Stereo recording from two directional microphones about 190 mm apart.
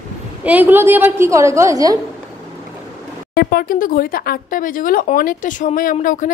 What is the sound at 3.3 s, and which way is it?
Speech, 50° left (ahead or behind).